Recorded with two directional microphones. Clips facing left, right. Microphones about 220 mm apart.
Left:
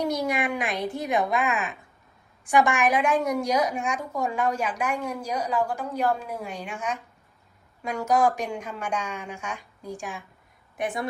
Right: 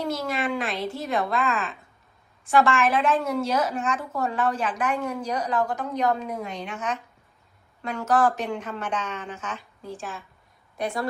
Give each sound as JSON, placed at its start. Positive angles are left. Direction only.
{"t": 0.0, "sound": "a woman's voice", "side_deg": 15}